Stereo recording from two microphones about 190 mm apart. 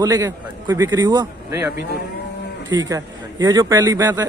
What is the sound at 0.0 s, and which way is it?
A man's voice, 20° right (ahead or behind).